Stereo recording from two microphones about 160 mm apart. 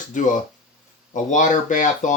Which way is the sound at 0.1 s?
55° left (ahead or behind).